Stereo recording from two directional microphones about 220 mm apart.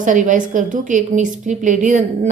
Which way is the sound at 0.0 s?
35° right (ahead or behind).